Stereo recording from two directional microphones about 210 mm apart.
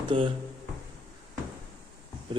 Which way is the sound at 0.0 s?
25° right (ahead or behind).